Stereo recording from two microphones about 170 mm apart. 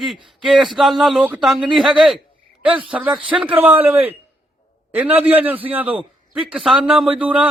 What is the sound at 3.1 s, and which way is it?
Speech, 30° right (ahead or behind).